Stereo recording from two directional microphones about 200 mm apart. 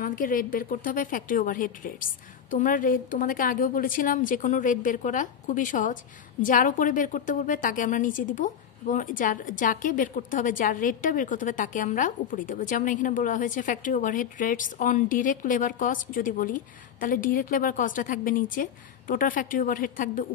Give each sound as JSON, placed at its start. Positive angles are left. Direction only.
{"t": 0.0, "sound": "a woman's voice", "side_deg": 45}